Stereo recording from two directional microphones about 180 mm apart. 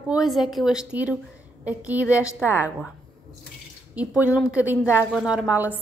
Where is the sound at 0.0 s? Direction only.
5° right (ahead or behind).